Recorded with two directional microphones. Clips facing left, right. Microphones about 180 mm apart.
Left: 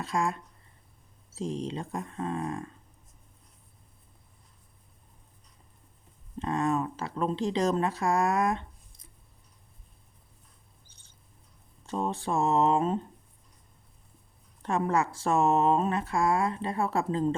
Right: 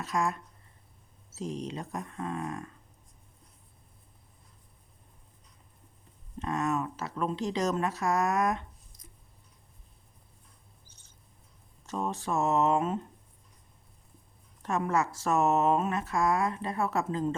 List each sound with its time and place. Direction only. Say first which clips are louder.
0.0 s speech: left 1 dB; 30° left (ahead or behind)
1.4 s speech: left 3 dB; 30° left (ahead or behind)
6.4 s speech: left 2 dB; 30° left (ahead or behind)
11.9 s speech: left 2 dB; 30° left (ahead or behind)
14.6 s speech: left 2 dB; 30° left (ahead or behind)